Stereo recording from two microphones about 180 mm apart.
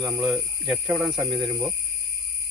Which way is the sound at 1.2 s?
20° right (ahead or behind).